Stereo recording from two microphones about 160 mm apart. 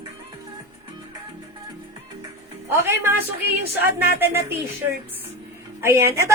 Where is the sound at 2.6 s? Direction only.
15° right (ahead or behind).